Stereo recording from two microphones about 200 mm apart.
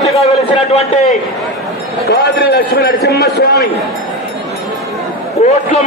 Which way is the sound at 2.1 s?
55° left (ahead or behind).